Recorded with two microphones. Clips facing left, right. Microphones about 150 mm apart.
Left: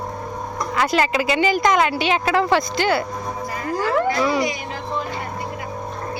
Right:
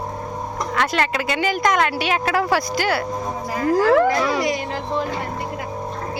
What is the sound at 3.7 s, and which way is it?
Speech, 90° right.